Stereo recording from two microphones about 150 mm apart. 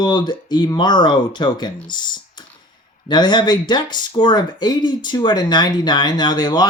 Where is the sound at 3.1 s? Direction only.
30° left (ahead or behind).